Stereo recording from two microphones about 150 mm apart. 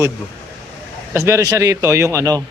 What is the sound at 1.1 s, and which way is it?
A man's voice, 20° right (ahead or behind).